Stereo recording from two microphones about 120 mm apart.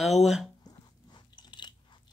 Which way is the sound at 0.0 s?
Centre (ahead or behind).